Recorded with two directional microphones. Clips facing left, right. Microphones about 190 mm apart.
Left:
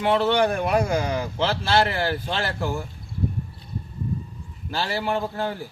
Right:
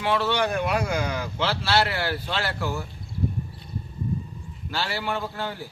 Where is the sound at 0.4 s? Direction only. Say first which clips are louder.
Left 3 dB; 45° left (ahead or behind).